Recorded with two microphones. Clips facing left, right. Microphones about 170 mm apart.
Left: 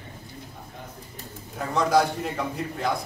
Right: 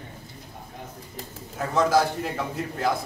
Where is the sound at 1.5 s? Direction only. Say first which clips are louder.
Even; centre (ahead or behind).